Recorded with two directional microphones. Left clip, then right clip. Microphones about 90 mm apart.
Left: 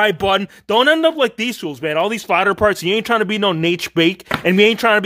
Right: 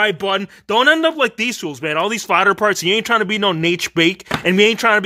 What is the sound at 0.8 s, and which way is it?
Speech, 10° left (ahead or behind).